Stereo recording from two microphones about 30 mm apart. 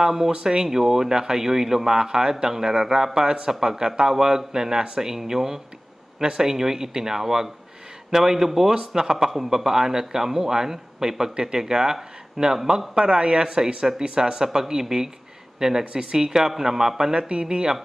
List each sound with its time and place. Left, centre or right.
0.0 s speech: centre
0.3 s speech: right
0.7 s speech: centre
2.0 s speech: right
6.2 s speech: right
6.5 s speech: centre
9.3 s speech: centre; by 16.2 s right
16.2 s speech: centre
17.1 s speech: right